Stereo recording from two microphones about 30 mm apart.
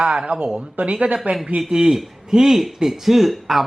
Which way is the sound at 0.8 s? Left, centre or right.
Right.